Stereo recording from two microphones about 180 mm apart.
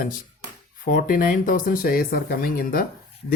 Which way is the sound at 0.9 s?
50° left (ahead or behind).